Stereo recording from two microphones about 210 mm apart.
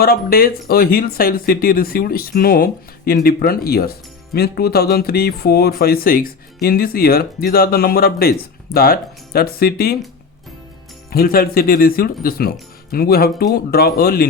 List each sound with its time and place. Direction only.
0.0 s speech: 45° left (ahead or behind)
11.1 s speech: 45° left (ahead or behind)